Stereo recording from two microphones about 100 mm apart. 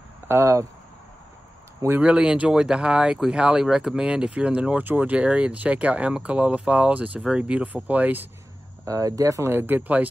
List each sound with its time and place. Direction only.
0.3 s speech: 25° right (ahead or behind)
2.0 s speech: 10° right (ahead or behind)
8.8 s speech: 35° right (ahead or behind); by 10.0 s 15° right (ahead or behind)